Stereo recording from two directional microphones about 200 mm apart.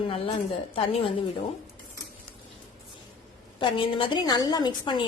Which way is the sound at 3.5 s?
25° left (ahead or behind).